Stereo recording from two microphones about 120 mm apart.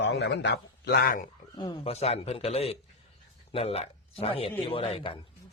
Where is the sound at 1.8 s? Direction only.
60° left (ahead or behind).